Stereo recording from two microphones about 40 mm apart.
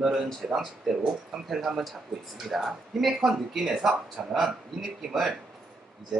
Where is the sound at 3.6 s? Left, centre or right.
Centre.